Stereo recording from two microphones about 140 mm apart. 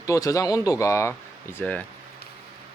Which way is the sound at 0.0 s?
25° left (ahead or behind).